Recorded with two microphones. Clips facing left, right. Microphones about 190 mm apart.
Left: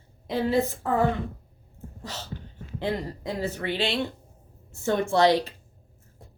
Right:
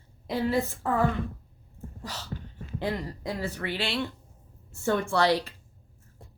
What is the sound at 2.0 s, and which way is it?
Speech, 25° left (ahead or behind).